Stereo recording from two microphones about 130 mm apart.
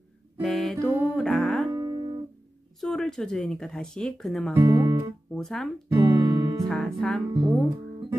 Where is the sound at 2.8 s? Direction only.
5° left (ahead or behind).